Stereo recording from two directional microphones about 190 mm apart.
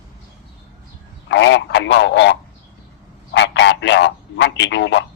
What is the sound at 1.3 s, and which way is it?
A man's voice, 70° left (ahead or behind).